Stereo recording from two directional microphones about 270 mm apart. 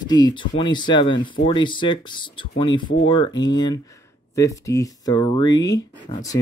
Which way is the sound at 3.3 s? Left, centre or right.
Left.